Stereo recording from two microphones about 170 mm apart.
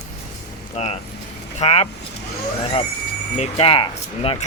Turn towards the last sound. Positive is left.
turn(degrees=35)  # may be behind; listen again after turning